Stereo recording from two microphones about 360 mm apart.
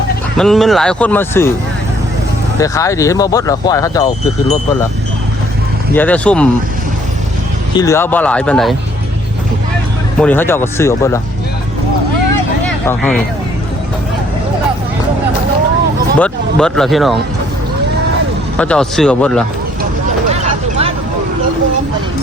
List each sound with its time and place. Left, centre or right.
0.3 s speech: centre
2.6 s speech: centre
5.9 s speech: centre
7.8 s speech: centre
10.2 s speech: centre
12.6 s vehicle: centre
16.1 s speech: centre
18.5 s speech: centre
20.3 s a sound: centre